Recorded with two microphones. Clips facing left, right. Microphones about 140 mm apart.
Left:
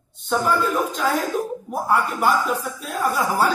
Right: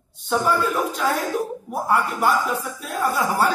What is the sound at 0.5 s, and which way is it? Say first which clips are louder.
Music: left 1 dB; 10° right (ahead or behind).